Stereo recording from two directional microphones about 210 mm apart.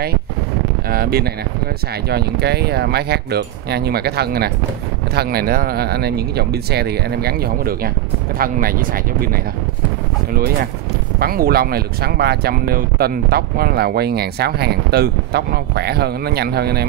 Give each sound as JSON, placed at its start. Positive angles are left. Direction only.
{"t": 0.8, "sound": "speech", "side_deg": -45}